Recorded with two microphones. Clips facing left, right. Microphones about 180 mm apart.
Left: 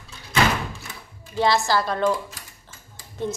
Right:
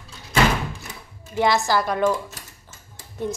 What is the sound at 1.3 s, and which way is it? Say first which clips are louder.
Speech: right 1 dB; 15° right (ahead or behind).